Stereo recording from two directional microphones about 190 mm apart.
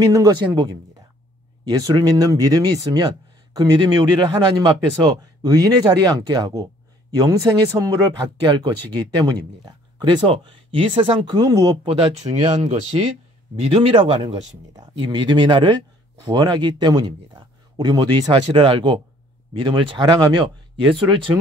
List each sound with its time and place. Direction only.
0.0 s speech: 20° right (ahead or behind)
1.7 s speech: 20° right (ahead or behind)